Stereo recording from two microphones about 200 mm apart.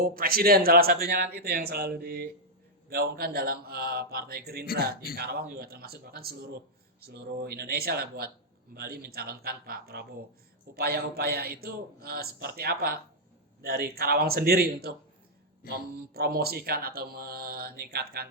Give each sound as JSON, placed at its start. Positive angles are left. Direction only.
{"t": 0.0, "sound": "speech", "side_deg": -45}
{"t": 4.6, "sound": "speech", "side_deg": 50}
{"t": 5.1, "sound": "speech", "side_deg": -55}